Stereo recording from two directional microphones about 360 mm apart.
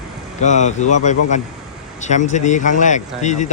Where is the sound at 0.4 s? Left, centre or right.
Centre.